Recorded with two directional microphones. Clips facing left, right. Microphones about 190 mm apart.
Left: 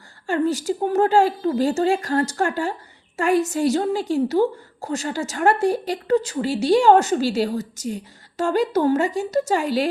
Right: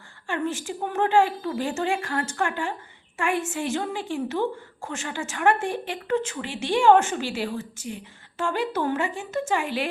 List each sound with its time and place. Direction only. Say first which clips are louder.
0.3 s a woman's voice: left 7 dB; 40° left (ahead or behind)